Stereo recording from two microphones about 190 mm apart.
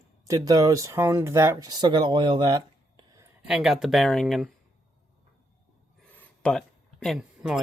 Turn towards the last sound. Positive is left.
turn(degrees=0)  # may be behind; listen again after turning